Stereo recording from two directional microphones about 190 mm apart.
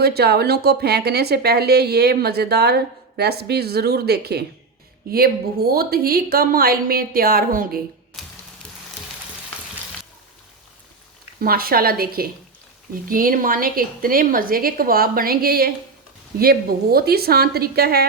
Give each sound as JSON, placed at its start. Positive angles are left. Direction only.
{"t": 0.0, "sound": "speech", "side_deg": -55}
{"t": 8.1, "sound": "a sound", "side_deg": 0}
{"t": 11.3, "sound": "speech", "side_deg": -50}